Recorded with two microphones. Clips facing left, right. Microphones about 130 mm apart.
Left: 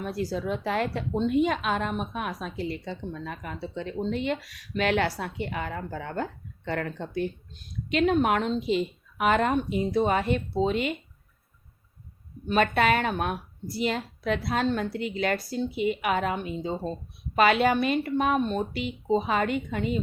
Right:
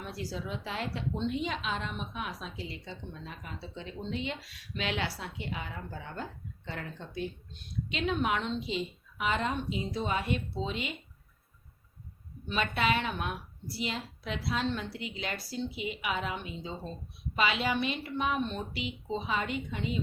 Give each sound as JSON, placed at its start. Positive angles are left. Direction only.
{"t": 0.0, "sound": "a woman's voice", "side_deg": 50}
{"t": 12.5, "sound": "a woman's voice", "side_deg": 50}